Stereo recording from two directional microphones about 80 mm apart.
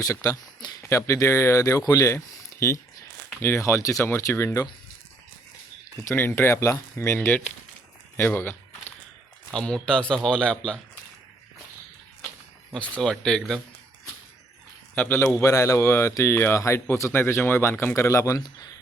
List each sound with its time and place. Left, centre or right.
0.0 s speech: left
6.1 s speech: left
7.3 s a man's voice: centre
9.5 s speech: centre
12.7 s a man's voice: centre
14.9 s a man's voice: left
15.4 s speech: left